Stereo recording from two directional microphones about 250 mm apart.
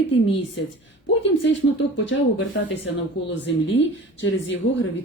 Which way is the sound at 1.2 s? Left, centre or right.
Left.